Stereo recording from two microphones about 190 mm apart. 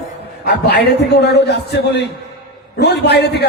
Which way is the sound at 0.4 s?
60° left (ahead or behind).